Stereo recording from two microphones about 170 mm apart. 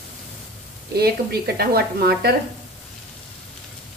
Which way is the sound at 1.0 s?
70° right (ahead or behind).